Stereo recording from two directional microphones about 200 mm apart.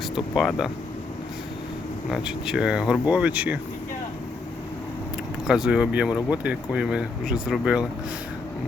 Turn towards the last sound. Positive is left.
turn(degrees=-5)  # may be behind; listen again after turning